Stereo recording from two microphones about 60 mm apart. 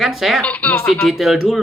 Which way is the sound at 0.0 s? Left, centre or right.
Centre.